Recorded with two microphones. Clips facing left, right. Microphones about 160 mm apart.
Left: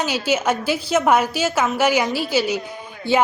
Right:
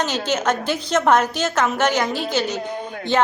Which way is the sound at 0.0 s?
10° left (ahead or behind).